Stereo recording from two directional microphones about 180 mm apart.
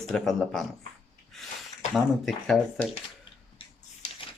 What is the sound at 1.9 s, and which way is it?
Speech, centre (ahead or behind).